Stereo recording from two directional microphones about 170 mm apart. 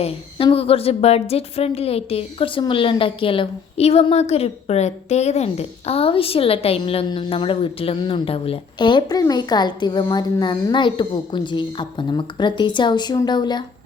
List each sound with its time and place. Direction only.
0.0 s a woman's voice: 35° left (ahead or behind)